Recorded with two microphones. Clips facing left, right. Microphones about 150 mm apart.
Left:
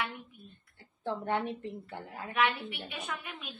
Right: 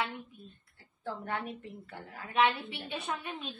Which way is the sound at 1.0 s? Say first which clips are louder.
Left 5 dB; 25° left (ahead or behind).